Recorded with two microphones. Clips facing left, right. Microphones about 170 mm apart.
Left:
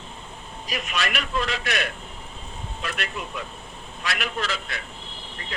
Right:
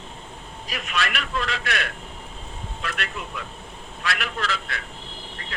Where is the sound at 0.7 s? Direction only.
20° left (ahead or behind).